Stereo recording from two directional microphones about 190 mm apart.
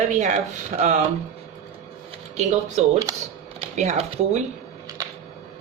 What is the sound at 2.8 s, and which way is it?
Speech, 35° right (ahead or behind).